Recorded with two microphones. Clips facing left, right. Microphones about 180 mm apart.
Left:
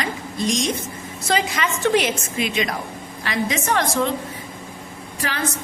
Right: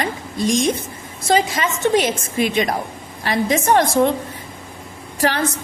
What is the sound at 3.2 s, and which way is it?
Speech, 50° right (ahead or behind).